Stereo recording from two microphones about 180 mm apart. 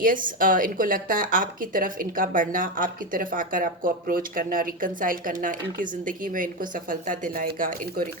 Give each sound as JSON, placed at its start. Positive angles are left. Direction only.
{"t": 0.0, "sound": "speech", "side_deg": -50}